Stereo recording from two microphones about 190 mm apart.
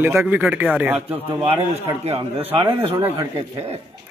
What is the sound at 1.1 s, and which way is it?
Speech, 30° right (ahead or behind).